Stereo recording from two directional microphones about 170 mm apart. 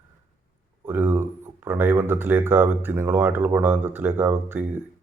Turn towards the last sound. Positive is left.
turn(degrees=-10)  # may be behind; listen again after turning